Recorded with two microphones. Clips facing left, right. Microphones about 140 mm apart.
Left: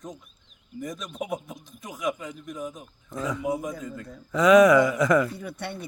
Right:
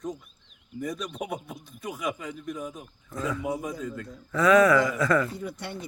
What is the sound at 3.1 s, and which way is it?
Speech, 15° left (ahead or behind).